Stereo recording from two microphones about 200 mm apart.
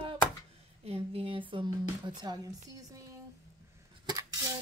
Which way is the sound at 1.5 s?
20° right (ahead or behind).